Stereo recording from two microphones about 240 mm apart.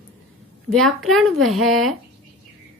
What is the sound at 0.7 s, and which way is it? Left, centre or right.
Speech, centre.